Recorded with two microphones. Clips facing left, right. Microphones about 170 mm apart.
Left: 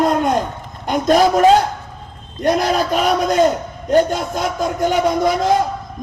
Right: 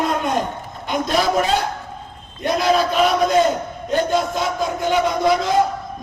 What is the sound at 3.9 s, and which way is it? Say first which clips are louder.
A man's voice: left 4 dB; 45° left (ahead or behind).